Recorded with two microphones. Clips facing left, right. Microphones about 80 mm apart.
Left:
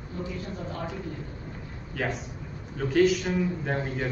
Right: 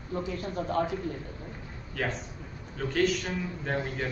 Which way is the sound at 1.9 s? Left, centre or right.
Centre.